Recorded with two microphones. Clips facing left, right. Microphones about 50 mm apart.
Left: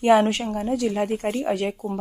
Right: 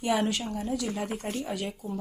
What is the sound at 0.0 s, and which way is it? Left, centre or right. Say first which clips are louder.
A woman's voice: left 10 dB; left.